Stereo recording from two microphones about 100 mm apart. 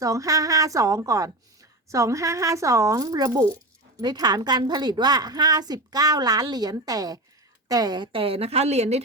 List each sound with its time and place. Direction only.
0.0 s a woman's voice: 35° right (ahead or behind); by 8.2 s 50° right (ahead or behind)
8.2 s a woman's voice: 80° right